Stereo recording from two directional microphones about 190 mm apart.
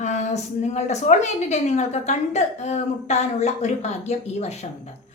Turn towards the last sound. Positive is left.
turn(degrees=35)  # may be behind; listen again after turning